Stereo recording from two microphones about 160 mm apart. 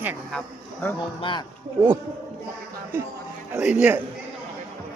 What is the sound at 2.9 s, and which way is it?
Speech, 15° right (ahead or behind).